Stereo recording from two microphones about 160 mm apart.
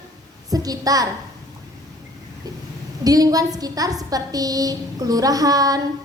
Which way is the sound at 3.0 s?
25° right (ahead or behind).